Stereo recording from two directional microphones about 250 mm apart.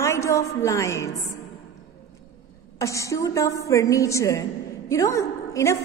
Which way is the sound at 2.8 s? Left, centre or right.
Centre.